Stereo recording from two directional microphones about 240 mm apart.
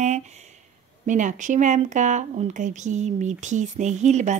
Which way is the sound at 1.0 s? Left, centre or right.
Right.